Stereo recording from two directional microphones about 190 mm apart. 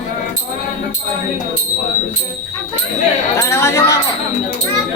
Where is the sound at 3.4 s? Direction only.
15° left (ahead or behind).